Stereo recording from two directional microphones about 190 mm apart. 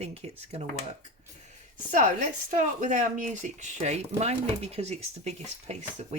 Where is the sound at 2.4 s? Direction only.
40° right (ahead or behind).